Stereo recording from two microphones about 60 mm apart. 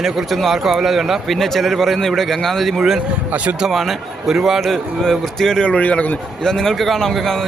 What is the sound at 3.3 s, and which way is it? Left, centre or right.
Speech, right.